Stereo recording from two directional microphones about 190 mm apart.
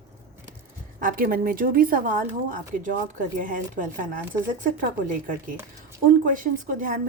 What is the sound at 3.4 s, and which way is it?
Speech, 45° right (ahead or behind).